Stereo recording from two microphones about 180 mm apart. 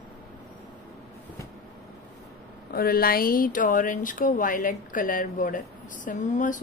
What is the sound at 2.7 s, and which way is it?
Speech, 55° left (ahead or behind).